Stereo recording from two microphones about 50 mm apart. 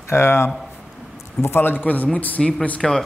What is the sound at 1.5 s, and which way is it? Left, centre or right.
Speech, left.